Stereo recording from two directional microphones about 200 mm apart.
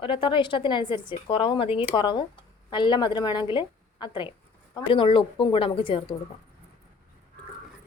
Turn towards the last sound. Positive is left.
turn(degrees=25)  # may be behind; listen again after turning